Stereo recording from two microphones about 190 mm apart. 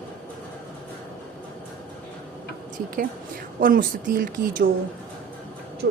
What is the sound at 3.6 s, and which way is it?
A woman's voice, 45° right (ahead or behind).